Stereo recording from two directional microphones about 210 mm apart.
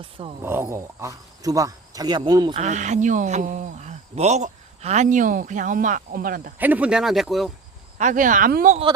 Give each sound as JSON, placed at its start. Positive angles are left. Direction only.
{"t": 0.0, "sound": "speech", "side_deg": -25}
{"t": 0.4, "sound": "speech", "side_deg": -10}
{"t": 2.6, "sound": "speech", "side_deg": -35}
{"t": 6.6, "sound": "speech", "side_deg": -10}
{"t": 7.9, "sound": "speech", "side_deg": -35}